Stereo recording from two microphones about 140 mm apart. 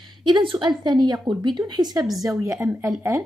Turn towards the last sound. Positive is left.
turn(degrees=-20)  # may be behind; listen again after turning